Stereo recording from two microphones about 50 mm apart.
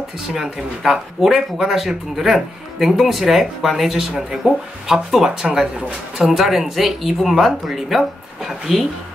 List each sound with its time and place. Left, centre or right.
0.3 s speech: centre
4.4 s speech: right; by 8.8 s centre